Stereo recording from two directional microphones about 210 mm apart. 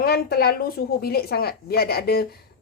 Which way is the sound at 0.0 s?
45° left (ahead or behind).